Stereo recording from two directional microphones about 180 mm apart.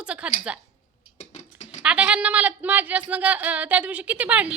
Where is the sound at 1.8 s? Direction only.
5° right (ahead or behind).